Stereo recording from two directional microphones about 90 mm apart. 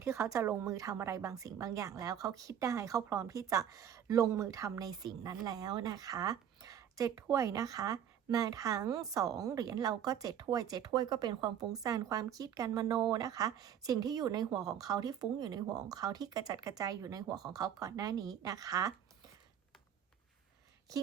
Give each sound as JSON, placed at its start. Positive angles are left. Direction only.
{"t": 0.0, "sound": "a woman's voice", "side_deg": -35}